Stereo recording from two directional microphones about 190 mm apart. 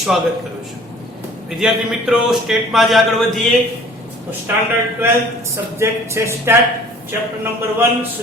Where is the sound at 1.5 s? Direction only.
5° right (ahead or behind).